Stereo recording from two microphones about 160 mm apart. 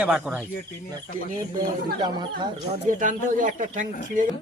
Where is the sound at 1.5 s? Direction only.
25° right (ahead or behind).